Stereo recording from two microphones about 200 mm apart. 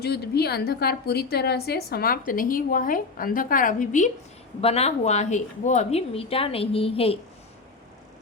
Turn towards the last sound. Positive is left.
turn(degrees=30)  # may be behind; listen again after turning